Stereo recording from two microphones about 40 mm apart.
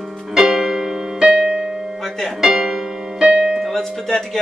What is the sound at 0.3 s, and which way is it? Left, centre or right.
Music, centre.